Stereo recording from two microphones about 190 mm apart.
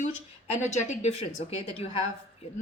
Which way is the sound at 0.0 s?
40° left (ahead or behind).